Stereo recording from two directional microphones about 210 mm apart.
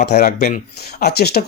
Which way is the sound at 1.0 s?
50° left (ahead or behind).